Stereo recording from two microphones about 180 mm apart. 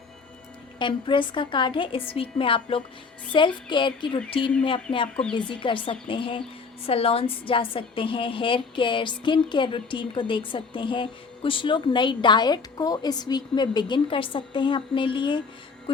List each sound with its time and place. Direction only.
0.8 s a woman's voice: 25° left (ahead or behind)